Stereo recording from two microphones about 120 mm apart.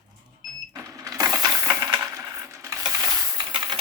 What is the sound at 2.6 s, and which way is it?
Coin, 30° right (ahead or behind).